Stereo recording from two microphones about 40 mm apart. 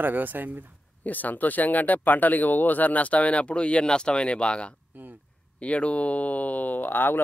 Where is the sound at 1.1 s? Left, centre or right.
Left.